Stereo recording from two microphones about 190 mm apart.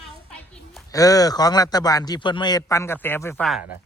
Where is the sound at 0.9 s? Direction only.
20° left (ahead or behind); by 3.7 s centre (ahead or behind).